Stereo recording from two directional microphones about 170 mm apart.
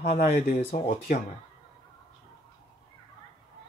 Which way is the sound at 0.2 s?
60° left (ahead or behind).